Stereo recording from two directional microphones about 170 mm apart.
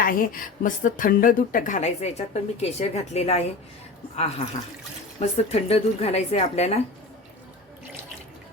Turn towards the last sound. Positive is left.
turn(degrees=40)  # may be behind; listen again after turning